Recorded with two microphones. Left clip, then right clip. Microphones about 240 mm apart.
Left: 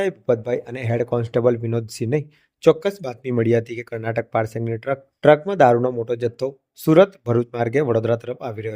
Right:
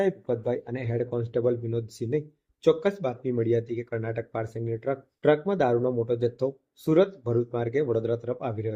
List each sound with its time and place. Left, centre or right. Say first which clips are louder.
0.0 s speech: left 6 dB; left